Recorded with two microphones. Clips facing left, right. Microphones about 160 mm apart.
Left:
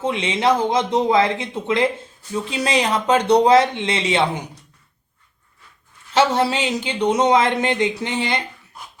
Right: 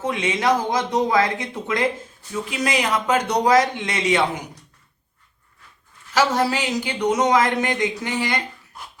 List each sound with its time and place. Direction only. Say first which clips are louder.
0.0 s speech: left 2 dB; 25° left (ahead or behind)
6.1 s speech: left 2 dB; 25° left (ahead or behind)